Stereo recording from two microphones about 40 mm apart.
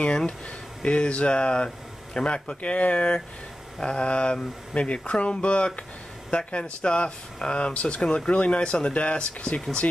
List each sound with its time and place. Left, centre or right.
0.8 s speech: left